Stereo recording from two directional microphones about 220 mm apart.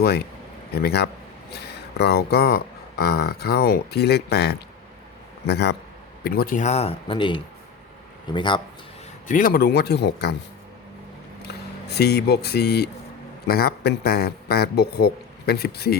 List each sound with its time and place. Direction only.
0.8 s speech: 45° left (ahead or behind); by 8.6 s 20° left (ahead or behind)
9.2 s speech: 40° left (ahead or behind)
11.9 s speech: 50° left (ahead or behind)